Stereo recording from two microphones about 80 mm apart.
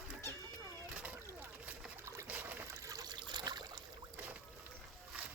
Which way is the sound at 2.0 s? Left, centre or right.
Right.